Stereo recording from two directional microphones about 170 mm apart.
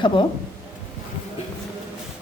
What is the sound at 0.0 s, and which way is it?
Speech, 30° left (ahead or behind).